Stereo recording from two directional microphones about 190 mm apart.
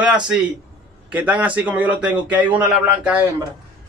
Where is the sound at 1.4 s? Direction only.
10° right (ahead or behind).